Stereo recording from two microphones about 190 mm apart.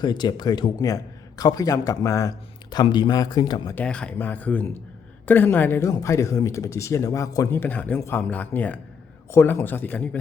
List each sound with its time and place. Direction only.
0.0 s a man's voice: 20° left (ahead or behind)
3.8 s speech: 5° left (ahead or behind)